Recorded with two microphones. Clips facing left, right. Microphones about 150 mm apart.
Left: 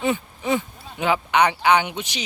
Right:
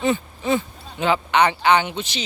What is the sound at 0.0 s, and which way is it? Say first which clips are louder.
Speech: right 2 dB; 10° left (ahead or behind).